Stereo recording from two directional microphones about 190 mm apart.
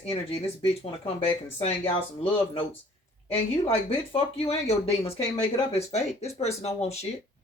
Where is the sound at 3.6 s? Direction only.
30° left (ahead or behind).